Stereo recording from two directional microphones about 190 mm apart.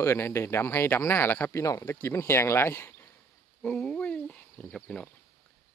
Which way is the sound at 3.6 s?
5° left (ahead or behind).